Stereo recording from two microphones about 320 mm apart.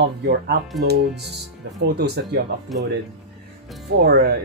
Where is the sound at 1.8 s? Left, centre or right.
Right.